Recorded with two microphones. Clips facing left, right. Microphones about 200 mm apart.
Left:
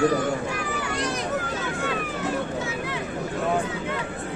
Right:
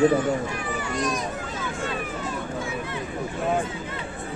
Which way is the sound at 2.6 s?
80° left.